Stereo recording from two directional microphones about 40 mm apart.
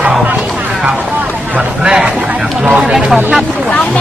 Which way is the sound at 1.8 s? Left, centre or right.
Right.